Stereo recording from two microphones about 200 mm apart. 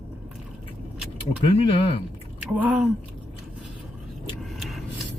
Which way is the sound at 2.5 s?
5° right (ahead or behind).